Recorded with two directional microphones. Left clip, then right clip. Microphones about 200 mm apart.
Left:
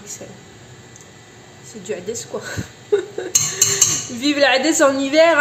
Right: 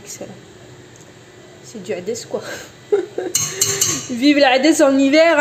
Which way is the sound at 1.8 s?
10° right (ahead or behind).